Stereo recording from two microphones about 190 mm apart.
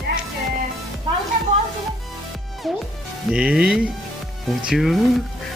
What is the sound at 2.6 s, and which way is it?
Music, centre (ahead or behind).